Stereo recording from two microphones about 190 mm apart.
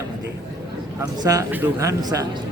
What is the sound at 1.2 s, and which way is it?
A man's voice, 15° right (ahead or behind).